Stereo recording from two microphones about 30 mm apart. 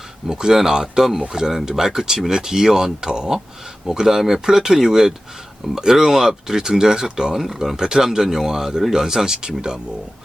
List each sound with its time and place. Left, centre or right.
0.3 s speech: right
3.9 s speech: centre
7.3 s speech: centre
7.8 s speech: centre